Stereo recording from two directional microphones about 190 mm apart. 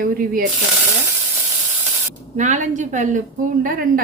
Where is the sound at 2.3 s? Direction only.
40° right (ahead or behind).